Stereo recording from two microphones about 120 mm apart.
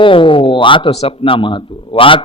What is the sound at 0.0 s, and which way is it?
Speech, 45° left (ahead or behind).